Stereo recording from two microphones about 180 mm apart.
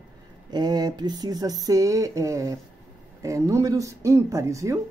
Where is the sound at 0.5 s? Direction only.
20° right (ahead or behind).